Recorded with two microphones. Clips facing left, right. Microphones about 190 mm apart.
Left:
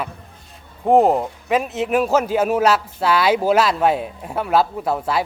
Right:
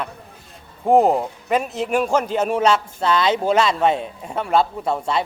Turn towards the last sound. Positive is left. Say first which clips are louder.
# left 1 dB
turn(degrees=5)  # may be behind; listen again after turning